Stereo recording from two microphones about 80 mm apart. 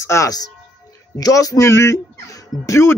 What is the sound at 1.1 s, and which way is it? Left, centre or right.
Speech, left.